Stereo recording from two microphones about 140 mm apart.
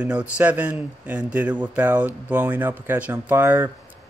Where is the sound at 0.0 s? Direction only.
10° right (ahead or behind).